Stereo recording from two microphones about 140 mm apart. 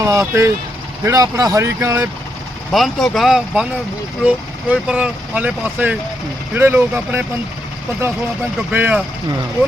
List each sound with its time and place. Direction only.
0.0 s speech: 25° right (ahead or behind)
2.7 s speech: centre (ahead or behind)
4.7 s speech: 5° right (ahead or behind)
8.7 s speech: 10° right (ahead or behind)